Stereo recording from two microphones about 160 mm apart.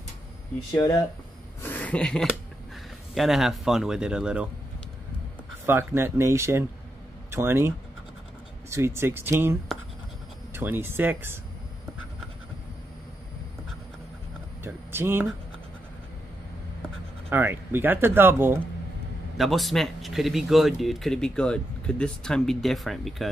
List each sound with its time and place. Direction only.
1.6 s a sound: 10° left (ahead or behind)
3.2 s speech: centre (ahead or behind)
5.7 s speech: 15° right (ahead or behind)
14.6 s a sound: 15° right (ahead or behind)
17.3 s speech: 15° right (ahead or behind)
19.3 s speech: centre (ahead or behind)